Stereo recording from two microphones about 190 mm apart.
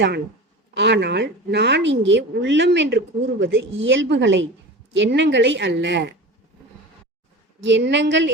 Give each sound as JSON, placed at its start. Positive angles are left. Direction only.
{"t": 0.7, "sound": "a woman's voice", "side_deg": -60}
{"t": 7.6, "sound": "a woman's voice", "side_deg": -70}